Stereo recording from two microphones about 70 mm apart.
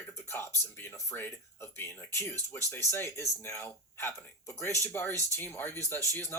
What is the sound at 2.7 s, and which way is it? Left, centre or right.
Speech, left.